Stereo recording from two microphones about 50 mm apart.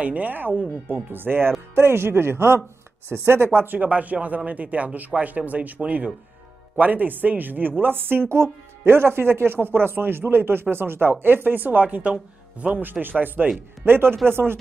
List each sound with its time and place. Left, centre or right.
0.0 s speech: right
1.8 s speech: right
3.5 s speech: right
13.1 s speech: right